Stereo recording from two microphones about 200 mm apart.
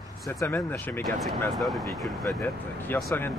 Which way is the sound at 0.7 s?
5° left (ahead or behind).